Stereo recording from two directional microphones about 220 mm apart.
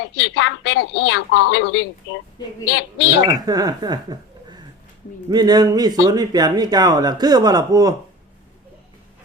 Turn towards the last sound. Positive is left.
turn(degrees=-15)  # may be behind; listen again after turning